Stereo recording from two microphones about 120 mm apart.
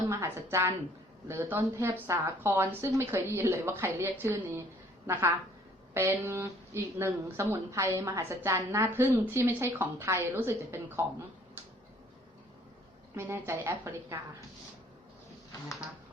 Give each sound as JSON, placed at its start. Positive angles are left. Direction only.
{"t": 0.1, "sound": "a woman's voice", "side_deg": -25}
{"t": 5.9, "sound": "a woman's voice", "side_deg": -20}
{"t": 13.1, "sound": "a woman's voice", "side_deg": -20}